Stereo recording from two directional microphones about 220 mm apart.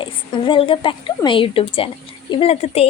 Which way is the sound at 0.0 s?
20° left (ahead or behind).